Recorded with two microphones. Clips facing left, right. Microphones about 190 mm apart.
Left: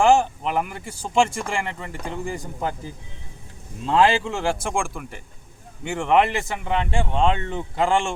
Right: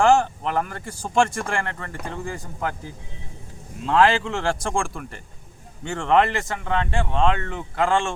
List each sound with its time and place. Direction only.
0.0 s speech: 10° left (ahead or behind)